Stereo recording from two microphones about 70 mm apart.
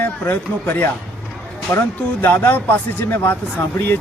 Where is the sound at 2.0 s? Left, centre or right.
Left.